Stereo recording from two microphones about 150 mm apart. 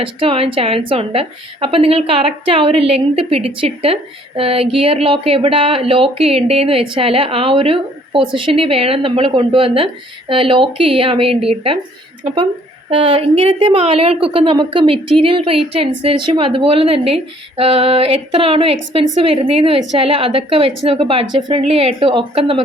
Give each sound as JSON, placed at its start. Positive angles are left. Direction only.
{"t": 0.0, "sound": "speech", "side_deg": -35}